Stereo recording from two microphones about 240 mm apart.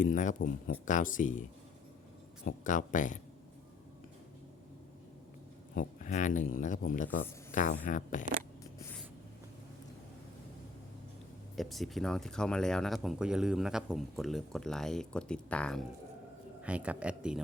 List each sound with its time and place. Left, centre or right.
0.0 s a man's voice: left
2.6 s a man's voice: left
5.7 s a man's voice: left
11.5 s speech: centre
16.6 s speech: centre